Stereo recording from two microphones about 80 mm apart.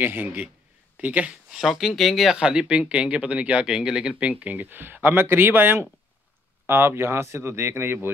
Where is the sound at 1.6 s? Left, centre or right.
Centre.